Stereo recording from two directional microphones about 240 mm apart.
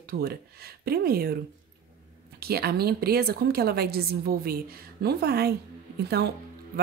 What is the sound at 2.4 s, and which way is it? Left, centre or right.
Speech, right.